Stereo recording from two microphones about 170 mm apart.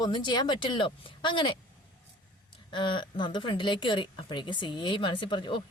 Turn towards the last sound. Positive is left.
turn(degrees=30)  # may be behind; listen again after turning